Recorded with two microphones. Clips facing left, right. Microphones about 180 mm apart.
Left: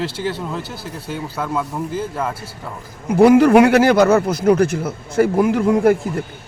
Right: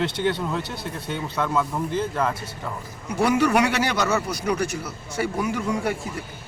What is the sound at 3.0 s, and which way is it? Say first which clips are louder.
Speech: left 10 dB; 55° left (ahead or behind).